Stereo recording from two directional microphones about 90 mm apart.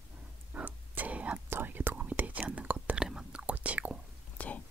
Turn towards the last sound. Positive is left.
turn(degrees=15)  # may be behind; listen again after turning